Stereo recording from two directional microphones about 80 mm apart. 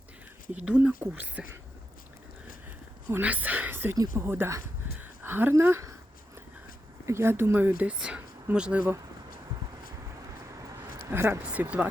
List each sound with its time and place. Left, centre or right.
0.6 s speech: centre
3.1 s speech: right
3.9 s speech: right
4.3 s speech: right
4.9 s a sound: right
7.0 s speech: right
7.9 s speech: centre
11.1 s speech: right
11.5 s speech: centre